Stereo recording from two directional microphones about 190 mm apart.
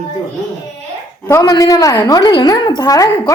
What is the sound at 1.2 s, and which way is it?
A woman's voice, 15° left (ahead or behind).